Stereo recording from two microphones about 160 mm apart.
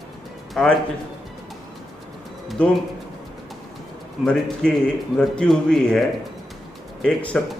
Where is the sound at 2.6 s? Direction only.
10° left (ahead or behind).